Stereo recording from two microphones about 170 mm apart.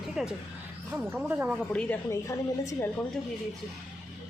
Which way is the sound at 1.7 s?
10° left (ahead or behind).